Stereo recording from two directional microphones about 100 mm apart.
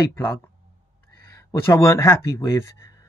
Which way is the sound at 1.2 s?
30° left (ahead or behind).